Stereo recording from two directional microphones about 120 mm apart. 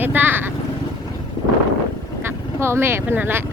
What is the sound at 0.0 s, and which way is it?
Vehicle, 15° right (ahead or behind).